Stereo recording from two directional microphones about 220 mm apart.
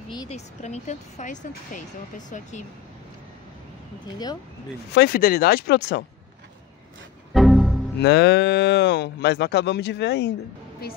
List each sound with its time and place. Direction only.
0.1 s speech: 20° left (ahead or behind)
0.6 s speech: 30° left (ahead or behind)
4.9 s moo: 45° left (ahead or behind)
7.3 s music: centre (ahead or behind)
8.0 s moo: 50° left (ahead or behind)